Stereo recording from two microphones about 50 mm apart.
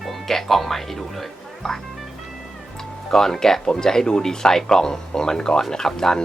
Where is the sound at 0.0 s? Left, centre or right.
Centre.